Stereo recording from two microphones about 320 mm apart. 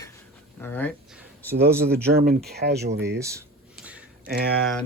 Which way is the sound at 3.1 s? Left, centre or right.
Centre.